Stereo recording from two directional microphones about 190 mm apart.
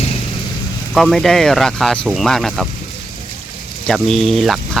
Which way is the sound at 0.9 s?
Centre (ahead or behind).